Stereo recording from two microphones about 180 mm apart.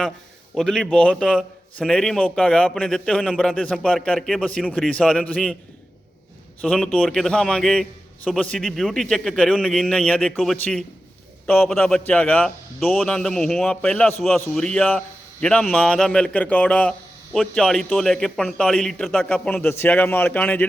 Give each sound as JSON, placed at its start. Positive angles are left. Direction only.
{"t": 0.5, "sound": "a man's voice", "side_deg": 0}
{"t": 6.6, "sound": "a man's voice", "side_deg": 5}